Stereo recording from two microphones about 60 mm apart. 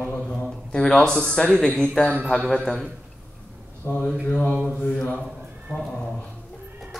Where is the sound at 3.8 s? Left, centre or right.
Left.